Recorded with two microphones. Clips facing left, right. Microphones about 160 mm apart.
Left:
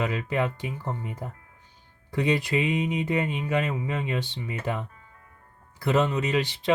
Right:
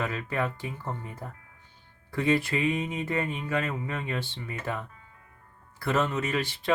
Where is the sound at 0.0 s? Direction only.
20° left (ahead or behind).